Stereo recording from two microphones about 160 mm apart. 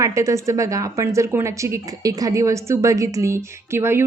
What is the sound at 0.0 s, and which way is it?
A woman's voice, 20° right (ahead or behind).